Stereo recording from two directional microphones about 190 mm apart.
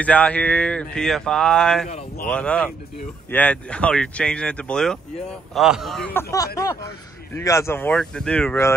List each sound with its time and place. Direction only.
0.0 s speech: 5° left (ahead or behind)
6.3 s speech: 15° left (ahead or behind)